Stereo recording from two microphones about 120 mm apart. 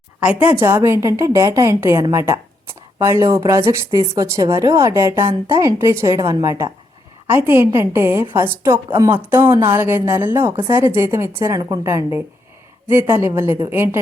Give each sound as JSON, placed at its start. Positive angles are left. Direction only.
{"t": 0.2, "sound": "a woman's voice", "side_deg": -10}